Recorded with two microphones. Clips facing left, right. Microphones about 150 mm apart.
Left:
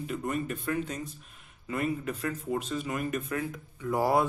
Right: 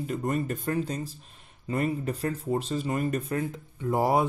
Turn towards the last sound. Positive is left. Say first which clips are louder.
# right 2 dB
turn(degrees=-20)  # may be behind; listen again after turning